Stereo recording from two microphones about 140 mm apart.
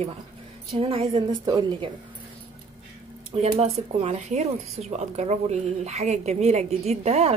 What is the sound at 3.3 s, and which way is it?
Speech, 50° right (ahead or behind).